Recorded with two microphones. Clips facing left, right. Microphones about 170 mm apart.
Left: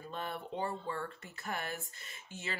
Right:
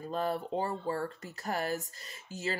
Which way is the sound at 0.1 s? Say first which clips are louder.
Right 8 dB; 40° right (ahead or behind).